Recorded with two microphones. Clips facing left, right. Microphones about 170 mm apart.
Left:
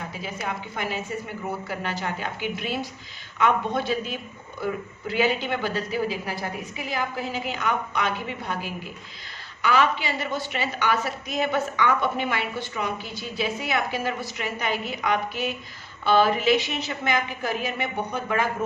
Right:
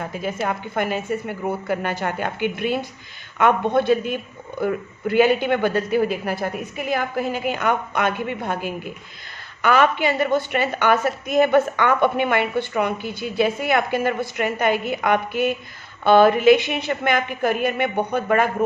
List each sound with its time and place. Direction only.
0.1 s a woman's voice: 55° right (ahead or behind)